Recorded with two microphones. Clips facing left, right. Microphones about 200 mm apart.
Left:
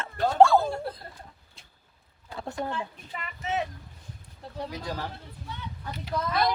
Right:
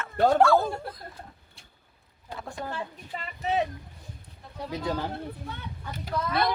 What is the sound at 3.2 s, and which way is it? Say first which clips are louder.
Speech: right 3 dB; 35° right (ahead or behind).